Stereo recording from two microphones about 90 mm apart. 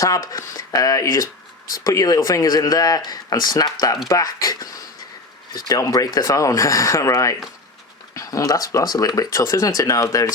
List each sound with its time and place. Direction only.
0.0 s speech: 40° left (ahead or behind)